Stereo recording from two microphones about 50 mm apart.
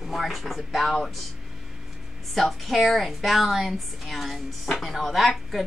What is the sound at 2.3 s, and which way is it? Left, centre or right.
A woman's voice, centre.